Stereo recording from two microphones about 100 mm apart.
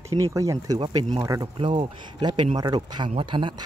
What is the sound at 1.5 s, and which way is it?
Speech, 55° right (ahead or behind).